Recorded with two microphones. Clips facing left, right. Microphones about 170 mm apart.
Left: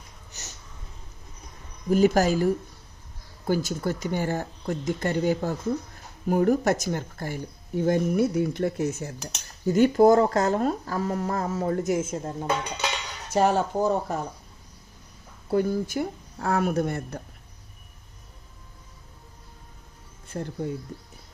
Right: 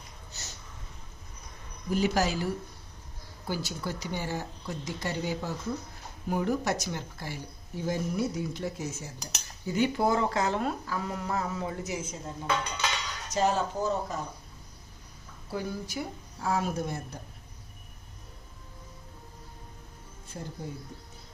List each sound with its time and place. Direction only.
0.3 s a sound: 15° left (ahead or behind)
1.9 s speech: 45° left (ahead or behind)
9.6 s speech: 45° left (ahead or behind)
13.3 s speech: 60° left (ahead or behind)
15.4 s speech: 55° left (ahead or behind)
20.2 s music: 65° left (ahead or behind)